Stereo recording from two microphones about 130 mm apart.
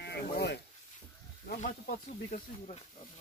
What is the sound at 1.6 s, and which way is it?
Speech, 90° left.